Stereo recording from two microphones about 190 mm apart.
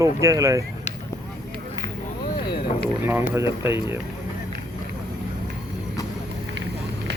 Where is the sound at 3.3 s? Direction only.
15° right (ahead or behind).